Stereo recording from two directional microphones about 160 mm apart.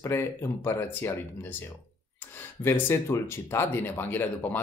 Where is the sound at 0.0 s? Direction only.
15° left (ahead or behind).